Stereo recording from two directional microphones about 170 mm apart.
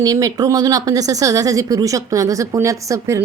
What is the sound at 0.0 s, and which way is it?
A woman's voice, 20° right (ahead or behind).